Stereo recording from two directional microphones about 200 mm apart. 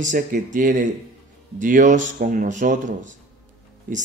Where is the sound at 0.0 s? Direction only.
40° right (ahead or behind).